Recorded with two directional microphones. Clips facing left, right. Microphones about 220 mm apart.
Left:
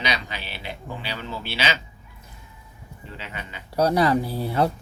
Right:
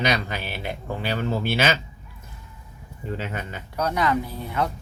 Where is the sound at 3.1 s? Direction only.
45° right (ahead or behind).